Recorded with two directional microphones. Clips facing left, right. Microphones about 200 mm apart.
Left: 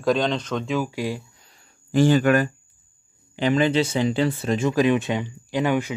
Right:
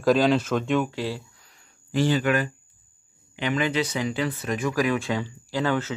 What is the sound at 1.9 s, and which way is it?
Speech, 45° left (ahead or behind).